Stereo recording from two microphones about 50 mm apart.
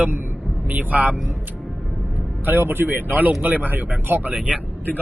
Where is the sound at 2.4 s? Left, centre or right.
Right.